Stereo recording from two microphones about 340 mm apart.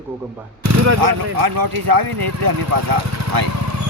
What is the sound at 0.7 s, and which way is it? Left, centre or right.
Speech, right.